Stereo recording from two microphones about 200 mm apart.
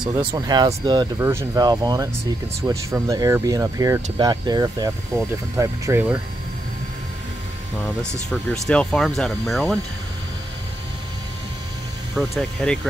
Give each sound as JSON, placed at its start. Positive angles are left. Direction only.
{"t": 0.2, "sound": "speech", "side_deg": -20}
{"t": 8.3, "sound": "speech", "side_deg": 5}
{"t": 12.2, "sound": "speech", "side_deg": 5}